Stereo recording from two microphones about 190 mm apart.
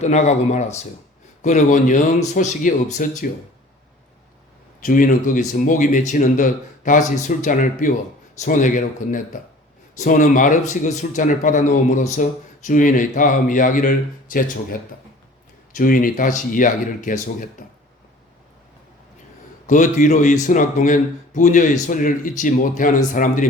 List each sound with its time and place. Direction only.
0.0 s speech: 35° left (ahead or behind)
4.8 s speech: 45° left (ahead or behind)
19.6 s speech: 40° left (ahead or behind)